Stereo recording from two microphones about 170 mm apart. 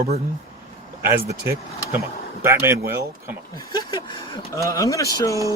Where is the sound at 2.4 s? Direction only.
15° right (ahead or behind).